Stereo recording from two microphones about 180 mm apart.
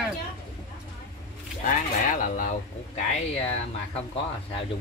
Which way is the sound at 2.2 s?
45° left (ahead or behind).